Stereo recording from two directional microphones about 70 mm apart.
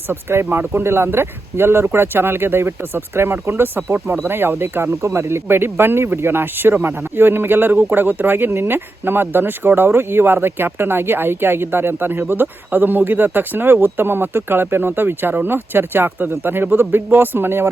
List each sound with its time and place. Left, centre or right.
0.1 s speech: right